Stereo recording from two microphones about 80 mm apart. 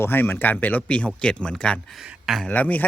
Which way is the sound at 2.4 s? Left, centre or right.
Centre.